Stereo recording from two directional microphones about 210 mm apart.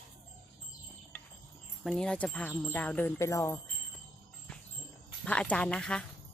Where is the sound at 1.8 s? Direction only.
Centre (ahead or behind).